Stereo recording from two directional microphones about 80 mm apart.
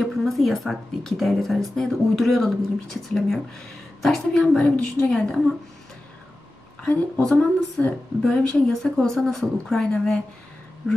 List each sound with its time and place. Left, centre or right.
0.0 s speech: centre
6.8 s a woman's voice: centre
7.2 s speech: centre
8.9 s speech: centre